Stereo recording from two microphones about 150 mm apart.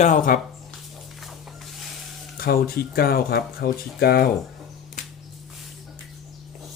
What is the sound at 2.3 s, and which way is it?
Speech, 85° left.